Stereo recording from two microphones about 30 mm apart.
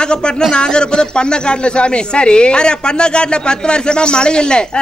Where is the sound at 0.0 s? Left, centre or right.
Left.